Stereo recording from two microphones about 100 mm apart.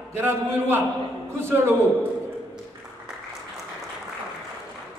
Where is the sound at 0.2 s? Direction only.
25° right (ahead or behind).